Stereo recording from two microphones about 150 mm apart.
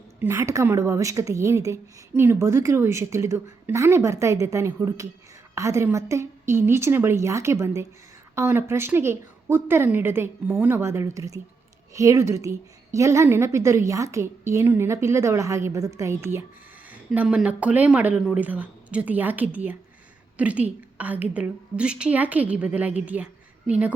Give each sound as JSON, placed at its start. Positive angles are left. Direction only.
{"t": 0.2, "sound": "a woman's voice", "side_deg": -15}
{"t": 16.9, "sound": "a woman's voice", "side_deg": -5}